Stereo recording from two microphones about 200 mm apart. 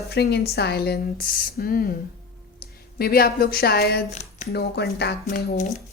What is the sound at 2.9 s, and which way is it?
Speech, 50° left (ahead or behind).